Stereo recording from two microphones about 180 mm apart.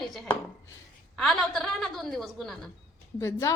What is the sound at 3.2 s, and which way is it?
Speech, 15° left (ahead or behind).